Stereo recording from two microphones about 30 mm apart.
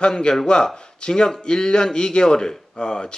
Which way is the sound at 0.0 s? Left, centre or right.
Left.